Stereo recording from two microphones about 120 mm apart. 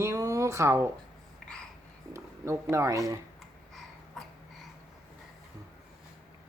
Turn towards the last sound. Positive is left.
turn(degrees=0)  # may be behind; listen again after turning